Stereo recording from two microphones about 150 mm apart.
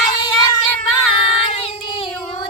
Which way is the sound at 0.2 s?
25° left (ahead or behind).